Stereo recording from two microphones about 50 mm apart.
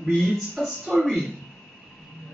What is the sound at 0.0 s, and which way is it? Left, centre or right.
Speech, centre.